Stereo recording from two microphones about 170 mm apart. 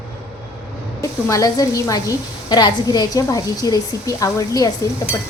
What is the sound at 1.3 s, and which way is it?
A woman's voice, 20° left (ahead or behind).